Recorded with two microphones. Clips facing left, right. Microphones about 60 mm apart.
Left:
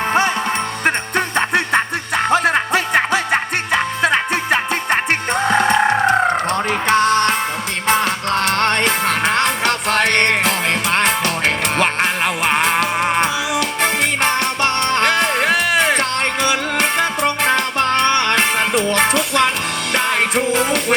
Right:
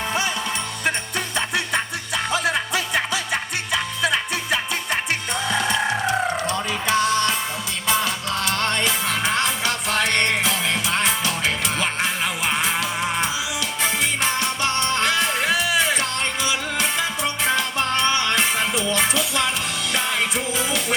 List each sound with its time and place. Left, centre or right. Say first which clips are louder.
0.9 s music: left 6 dB; left